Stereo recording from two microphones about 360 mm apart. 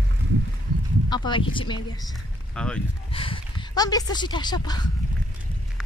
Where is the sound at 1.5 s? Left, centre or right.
Centre.